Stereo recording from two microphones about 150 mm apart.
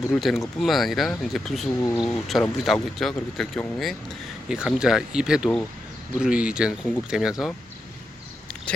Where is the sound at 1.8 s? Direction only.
20° left (ahead or behind).